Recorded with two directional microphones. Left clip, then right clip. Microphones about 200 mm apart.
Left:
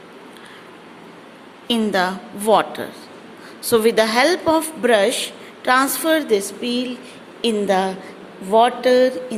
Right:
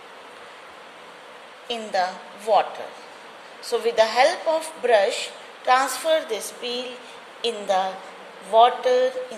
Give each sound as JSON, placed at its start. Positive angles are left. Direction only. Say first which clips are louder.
{"t": 1.6, "sound": "a woman's voice", "louder": "left 5 dB", "side_deg": 25}